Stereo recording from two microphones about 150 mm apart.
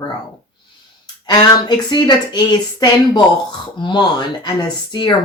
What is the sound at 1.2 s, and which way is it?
Speech, 30° left (ahead or behind).